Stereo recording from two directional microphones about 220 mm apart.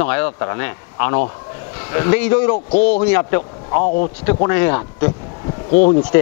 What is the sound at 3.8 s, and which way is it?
Speech, 40° left (ahead or behind).